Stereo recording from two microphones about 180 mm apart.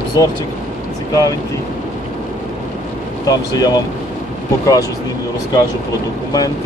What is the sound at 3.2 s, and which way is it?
Speech, 20° left (ahead or behind).